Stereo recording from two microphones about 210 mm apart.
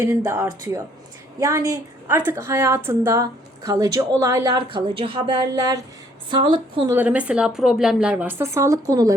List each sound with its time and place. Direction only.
0.0 s a woman's voice: 10° right (ahead or behind)
6.9 s a woman's voice: 5° right (ahead or behind)